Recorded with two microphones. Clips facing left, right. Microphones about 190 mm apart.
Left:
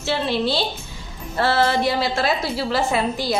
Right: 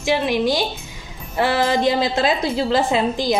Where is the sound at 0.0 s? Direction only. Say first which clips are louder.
Right 3 dB; 15° right (ahead or behind).